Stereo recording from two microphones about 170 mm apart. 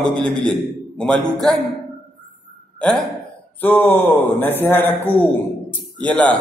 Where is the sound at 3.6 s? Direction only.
10° left (ahead or behind).